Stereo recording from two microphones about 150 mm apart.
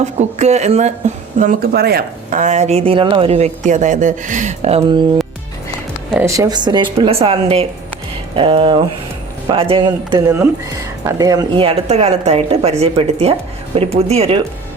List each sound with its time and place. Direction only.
0.0 s speech: 50° right (ahead or behind); by 2.4 s 90° right
2.4 s speech: 50° right (ahead or behind)
6.1 s speech: 20° right (ahead or behind); by 14.4 s 40° right (ahead or behind)